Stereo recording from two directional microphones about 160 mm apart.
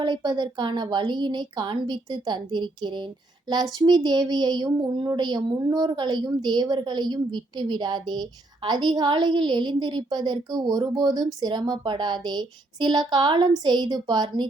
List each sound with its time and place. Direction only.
0.0 s speech: 25° right (ahead or behind)